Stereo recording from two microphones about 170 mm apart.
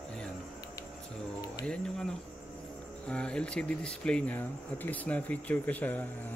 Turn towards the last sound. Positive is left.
turn(degrees=10)  # may be behind; listen again after turning